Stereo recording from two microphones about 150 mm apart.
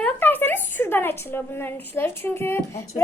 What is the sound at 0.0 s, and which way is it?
A woman's voice, 10° left (ahead or behind).